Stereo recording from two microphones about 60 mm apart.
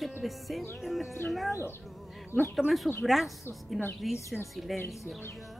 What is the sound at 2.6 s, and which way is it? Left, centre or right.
Speech, left.